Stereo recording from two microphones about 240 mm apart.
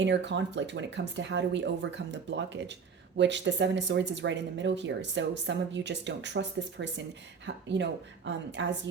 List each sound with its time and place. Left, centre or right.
0.0 s speech: right
3.2 s speech: right